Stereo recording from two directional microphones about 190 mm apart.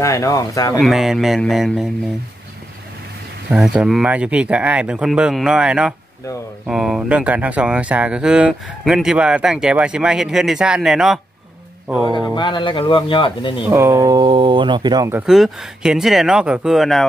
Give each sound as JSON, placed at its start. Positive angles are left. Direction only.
{"t": 0.0, "sound": "speech", "side_deg": 15}
{"t": 0.7, "sound": "speech", "side_deg": 0}
{"t": 3.4, "sound": "speech", "side_deg": -5}
{"t": 12.2, "sound": "speech", "side_deg": 25}
{"t": 13.7, "sound": "speech", "side_deg": -15}
{"t": 15.2, "sound": "speech", "side_deg": 0}